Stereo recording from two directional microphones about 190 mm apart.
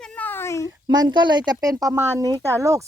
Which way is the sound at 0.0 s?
5° left (ahead or behind).